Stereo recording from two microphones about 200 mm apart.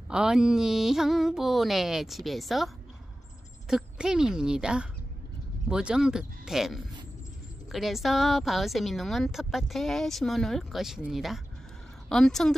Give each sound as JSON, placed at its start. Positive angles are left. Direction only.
{"t": 0.1, "sound": "a woman's voice", "side_deg": -5}